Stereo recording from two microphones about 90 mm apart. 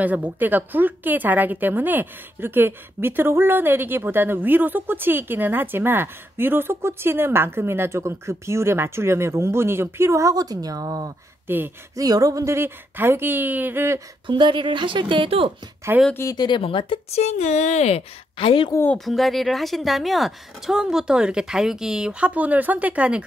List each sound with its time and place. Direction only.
0.0 s a woman's voice: 20° right (ahead or behind); by 11.1 s 45° right (ahead or behind)
11.4 s speech: 25° right (ahead or behind)
11.9 s a woman's voice: 40° right (ahead or behind); by 13.9 s 25° right (ahead or behind)
14.2 s speech: 60° right (ahead or behind); by 15.5 s 80° right
15.9 s a woman's voice: 20° right (ahead or behind)
16.3 s speech: 60° left (ahead or behind)
18.4 s a woman's voice: 80° left
18.9 s speech: centre (ahead or behind)